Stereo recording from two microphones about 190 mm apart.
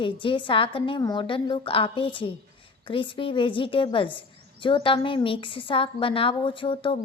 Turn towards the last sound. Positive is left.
turn(degrees=25)  # may be behind; listen again after turning